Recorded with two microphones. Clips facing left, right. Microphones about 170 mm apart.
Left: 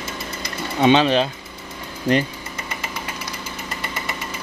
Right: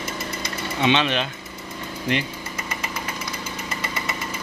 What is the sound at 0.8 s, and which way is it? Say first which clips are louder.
Speech: left 6 dB; 35° left (ahead or behind).